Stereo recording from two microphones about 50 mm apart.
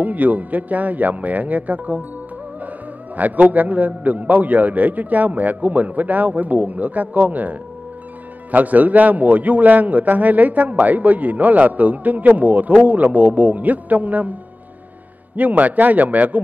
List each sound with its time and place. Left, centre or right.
0.0 s a man's voice: right
3.2 s a man's voice: right
15.3 s a man's voice: right